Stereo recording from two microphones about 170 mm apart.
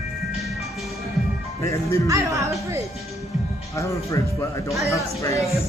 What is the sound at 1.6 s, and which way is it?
Speech, 15° left (ahead or behind).